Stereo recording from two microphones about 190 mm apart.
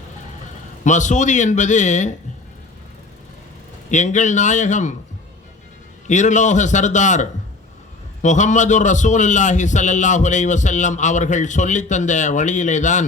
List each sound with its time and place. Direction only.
0.9 s a man's voice: 40° left (ahead or behind)
3.9 s a man's voice: 40° left (ahead or behind)
6.1 s a man's voice: 40° left (ahead or behind)